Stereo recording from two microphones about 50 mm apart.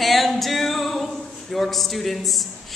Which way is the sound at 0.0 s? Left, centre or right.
Centre.